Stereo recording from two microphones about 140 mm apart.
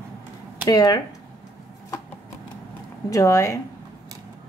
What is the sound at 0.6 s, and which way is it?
Speech, 30° left (ahead or behind).